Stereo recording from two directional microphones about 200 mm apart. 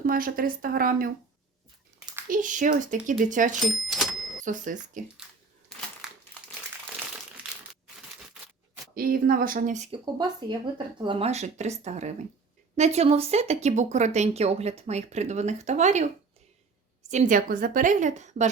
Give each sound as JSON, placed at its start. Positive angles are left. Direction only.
{"t": 0.0, "sound": "speech", "side_deg": -45}
{"t": 2.3, "sound": "speech", "side_deg": -40}
{"t": 3.6, "sound": "cash register", "side_deg": 0}
{"t": 4.4, "sound": "speech", "side_deg": -40}
{"t": 9.0, "sound": "speech", "side_deg": -45}
{"t": 10.5, "sound": "a woman's voice", "side_deg": -25}
{"t": 17.1, "sound": "speech", "side_deg": -40}